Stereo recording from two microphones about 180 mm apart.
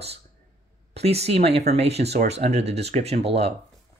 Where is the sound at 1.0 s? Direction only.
35° right (ahead or behind).